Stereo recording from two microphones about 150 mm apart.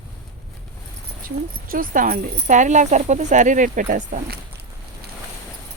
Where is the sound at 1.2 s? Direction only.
70° right (ahead or behind); by 2.4 s 90° right.